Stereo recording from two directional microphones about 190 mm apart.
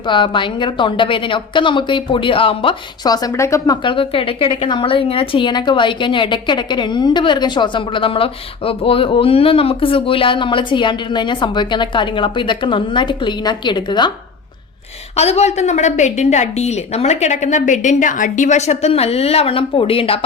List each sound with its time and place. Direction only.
0.1 s a woman's voice: 25° left (ahead or behind)
15.1 s a woman's voice: 35° left (ahead or behind)